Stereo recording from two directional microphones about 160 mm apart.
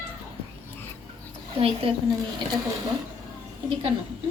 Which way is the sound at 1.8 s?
35° right (ahead or behind).